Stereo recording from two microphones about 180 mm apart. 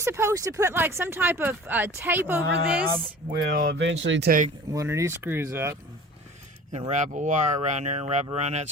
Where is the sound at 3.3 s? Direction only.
55° right (ahead or behind); by 4.3 s 90° right.